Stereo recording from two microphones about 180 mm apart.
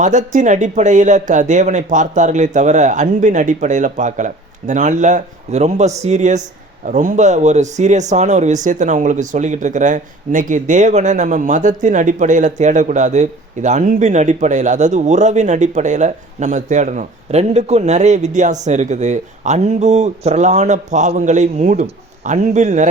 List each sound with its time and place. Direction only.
0.0 s speech: 45° right (ahead or behind)